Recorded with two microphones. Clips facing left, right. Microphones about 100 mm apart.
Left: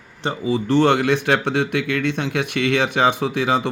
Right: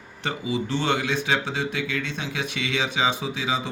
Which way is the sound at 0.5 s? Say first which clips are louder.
Left 9 dB; 50° left (ahead or behind).